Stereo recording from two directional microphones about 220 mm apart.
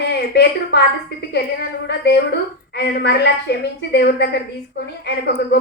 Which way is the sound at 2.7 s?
50° left (ahead or behind).